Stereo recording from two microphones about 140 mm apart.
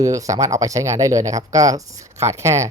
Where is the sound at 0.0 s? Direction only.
25° right (ahead or behind).